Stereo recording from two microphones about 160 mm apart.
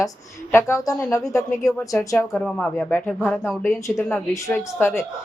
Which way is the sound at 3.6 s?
15° left (ahead or behind).